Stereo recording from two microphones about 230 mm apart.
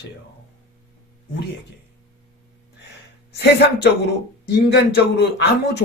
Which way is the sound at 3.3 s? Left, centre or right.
Left.